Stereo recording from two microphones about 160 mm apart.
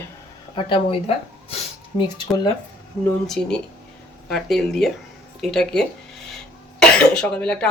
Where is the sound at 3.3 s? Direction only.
5° left (ahead or behind).